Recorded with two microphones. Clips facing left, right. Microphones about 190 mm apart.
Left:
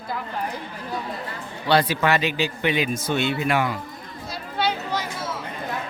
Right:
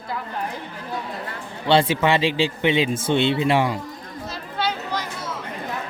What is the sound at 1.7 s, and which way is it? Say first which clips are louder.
Speech: right 2 dB; 25° right (ahead or behind).